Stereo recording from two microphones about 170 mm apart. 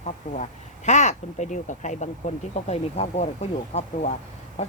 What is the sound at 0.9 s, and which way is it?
Speech, 45° left (ahead or behind).